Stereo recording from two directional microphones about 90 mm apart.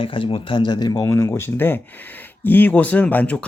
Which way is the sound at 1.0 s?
35° left (ahead or behind).